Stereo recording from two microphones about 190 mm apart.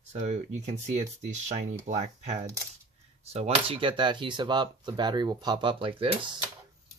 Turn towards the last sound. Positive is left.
turn(degrees=-25)  # may be behind; listen again after turning